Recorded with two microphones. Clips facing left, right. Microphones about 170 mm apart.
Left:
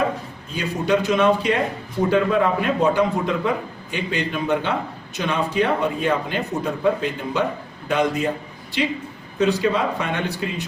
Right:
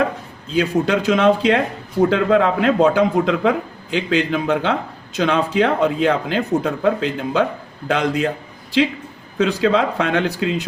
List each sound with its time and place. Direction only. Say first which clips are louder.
0.5 s a man's voice: right 4 dB; 90° right
9.4 s a man's voice: right 3 dB; 90° right